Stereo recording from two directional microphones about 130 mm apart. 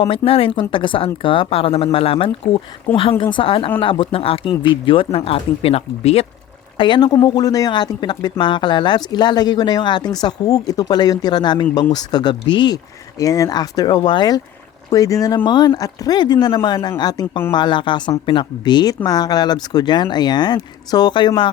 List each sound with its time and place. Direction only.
0.0 s speech: 45° left (ahead or behind)
6.7 s speech: 35° left (ahead or behind)